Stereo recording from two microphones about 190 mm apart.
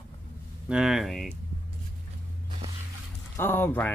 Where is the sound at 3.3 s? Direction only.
10° left (ahead or behind).